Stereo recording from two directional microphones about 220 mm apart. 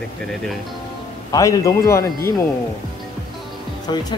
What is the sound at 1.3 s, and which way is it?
Speech, 15° left (ahead or behind).